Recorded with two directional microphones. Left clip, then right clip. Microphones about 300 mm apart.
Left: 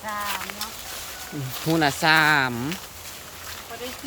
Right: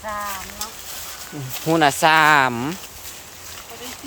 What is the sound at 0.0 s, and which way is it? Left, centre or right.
Speech, right.